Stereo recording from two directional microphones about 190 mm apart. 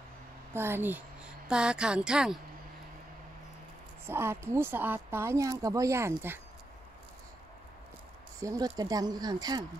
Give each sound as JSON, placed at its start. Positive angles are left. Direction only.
{"t": 0.5, "sound": "a woman's voice", "side_deg": -10}
{"t": 4.0, "sound": "speech", "side_deg": -15}
{"t": 8.4, "sound": "speech", "side_deg": -20}